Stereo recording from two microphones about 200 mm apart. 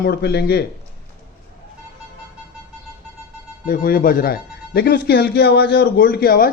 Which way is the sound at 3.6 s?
45° left (ahead or behind).